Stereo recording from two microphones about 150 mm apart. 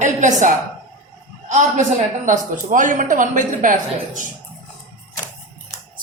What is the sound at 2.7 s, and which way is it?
A woman's voice, 60° right (ahead or behind).